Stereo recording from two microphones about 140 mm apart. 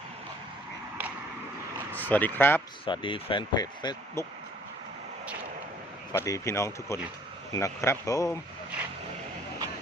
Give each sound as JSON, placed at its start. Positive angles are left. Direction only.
{"t": 1.9, "sound": "speech", "side_deg": 10}
{"t": 2.8, "sound": "speech", "side_deg": 35}
{"t": 6.1, "sound": "speech", "side_deg": 20}